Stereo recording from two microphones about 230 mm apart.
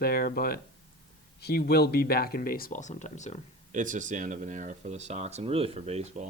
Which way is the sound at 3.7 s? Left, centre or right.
Right.